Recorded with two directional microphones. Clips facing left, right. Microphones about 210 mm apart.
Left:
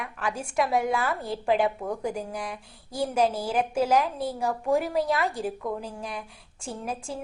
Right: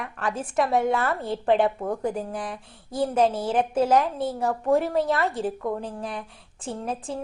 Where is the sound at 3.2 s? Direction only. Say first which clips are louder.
Right 2 dB; 30° right (ahead or behind).